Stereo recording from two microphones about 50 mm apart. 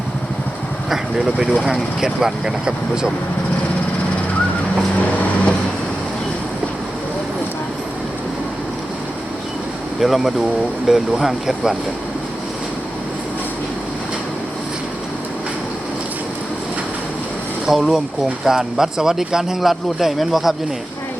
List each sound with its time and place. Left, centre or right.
0.9 s speech: centre
4.9 s vehicle: left
10.0 s speech: centre
17.7 s speech: centre